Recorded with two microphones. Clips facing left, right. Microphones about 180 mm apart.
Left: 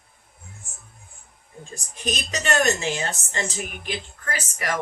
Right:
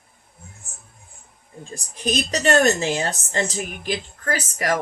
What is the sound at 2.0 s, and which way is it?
Speech, 35° right (ahead or behind).